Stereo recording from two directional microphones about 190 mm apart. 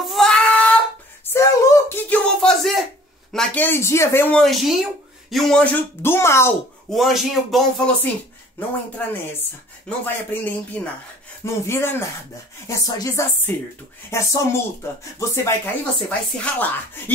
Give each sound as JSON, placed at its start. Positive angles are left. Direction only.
{"t": 0.0, "sound": "child singing", "side_deg": 0}
{"t": 1.2, "sound": "a sound", "side_deg": 15}
{"t": 3.3, "sound": "speech", "side_deg": 10}
{"t": 6.9, "sound": "speech", "side_deg": 0}